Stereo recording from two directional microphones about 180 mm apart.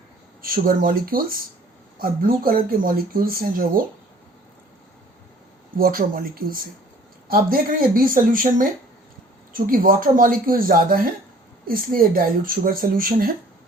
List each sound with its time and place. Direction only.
0.4 s speech: 50° right (ahead or behind)
5.7 s speech: 55° right (ahead or behind)